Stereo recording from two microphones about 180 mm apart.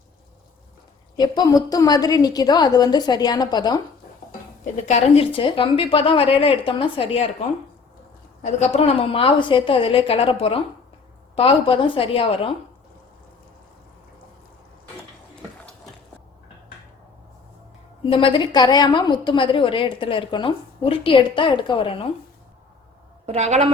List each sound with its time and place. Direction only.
1.1 s a woman's voice: 20° left (ahead or behind)
4.3 s a woman's voice: 40° left (ahead or behind)
8.4 s a woman's voice: 35° left (ahead or behind)
18.1 s a woman's voice: 30° left (ahead or behind)
23.2 s a woman's voice: 40° right (ahead or behind)